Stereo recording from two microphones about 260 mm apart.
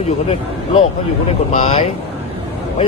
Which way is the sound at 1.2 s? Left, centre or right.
Left.